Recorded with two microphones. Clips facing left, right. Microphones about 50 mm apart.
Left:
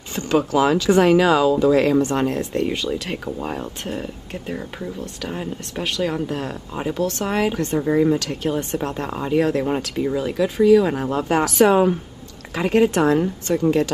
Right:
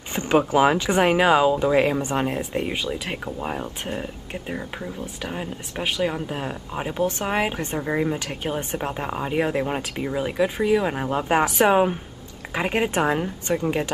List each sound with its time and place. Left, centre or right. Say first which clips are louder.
0.1 s speech: even; right